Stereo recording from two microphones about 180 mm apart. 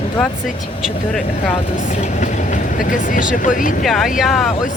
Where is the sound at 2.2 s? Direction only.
45° left (ahead or behind).